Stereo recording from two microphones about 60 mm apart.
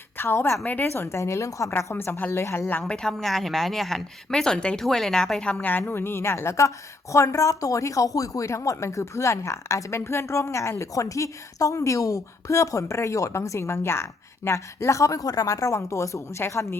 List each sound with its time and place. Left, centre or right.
0.2 s speech: left
0.6 s a woman's voice: left
0.9 s a woman's voice: left
1.2 s a woman's voice: left
2.3 s a woman's voice: left
2.9 s speech: centre
5.9 s a woman's voice: left
10.1 s a woman's voice: left
15.7 s a woman's voice: left